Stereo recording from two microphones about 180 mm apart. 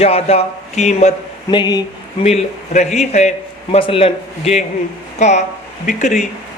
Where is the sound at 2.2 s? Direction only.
40° left (ahead or behind).